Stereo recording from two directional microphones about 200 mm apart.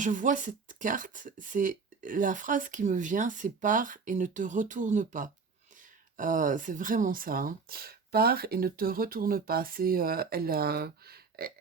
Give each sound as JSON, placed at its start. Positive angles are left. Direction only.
{"t": 0.0, "sound": "speech", "side_deg": -40}